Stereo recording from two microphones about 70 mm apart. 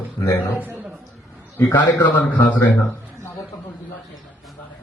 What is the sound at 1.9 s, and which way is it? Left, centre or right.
Speech, left.